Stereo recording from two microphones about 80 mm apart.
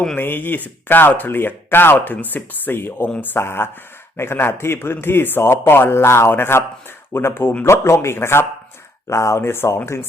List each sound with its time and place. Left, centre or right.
0.2 s speech: left